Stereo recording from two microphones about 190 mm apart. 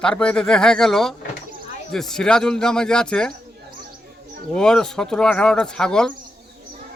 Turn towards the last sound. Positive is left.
turn(degrees=5)  # may be behind; listen again after turning